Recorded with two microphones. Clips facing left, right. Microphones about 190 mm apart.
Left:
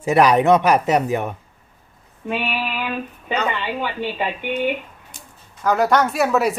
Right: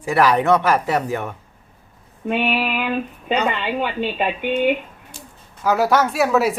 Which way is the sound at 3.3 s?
15° right (ahead or behind).